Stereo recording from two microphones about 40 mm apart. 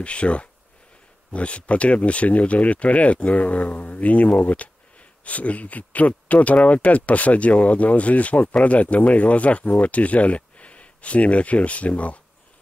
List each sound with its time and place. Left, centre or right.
0.0 s speech: left